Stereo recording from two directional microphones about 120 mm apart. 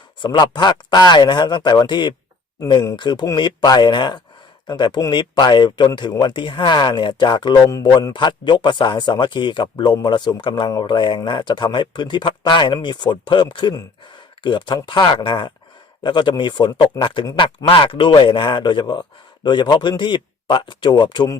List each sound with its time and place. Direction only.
0.2 s speech: 40° left (ahead or behind)